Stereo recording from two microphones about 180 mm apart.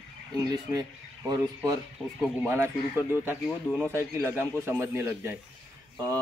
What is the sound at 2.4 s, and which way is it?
Speech, 15° right (ahead or behind).